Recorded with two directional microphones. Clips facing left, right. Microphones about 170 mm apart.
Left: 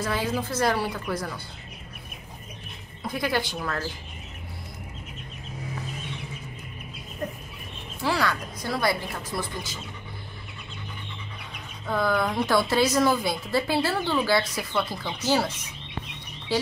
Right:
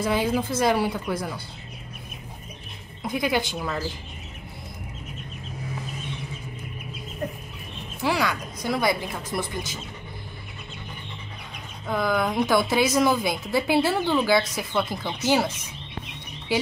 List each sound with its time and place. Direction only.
0.0 s a woman's voice: 15° right (ahead or behind)
3.0 s a woman's voice: 15° right (ahead or behind)
8.0 s a woman's voice: 15° right (ahead or behind)
11.9 s a woman's voice: 15° right (ahead or behind)